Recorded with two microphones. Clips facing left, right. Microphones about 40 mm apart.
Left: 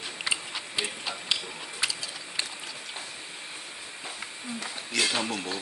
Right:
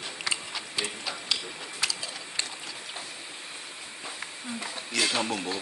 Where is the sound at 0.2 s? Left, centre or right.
Centre.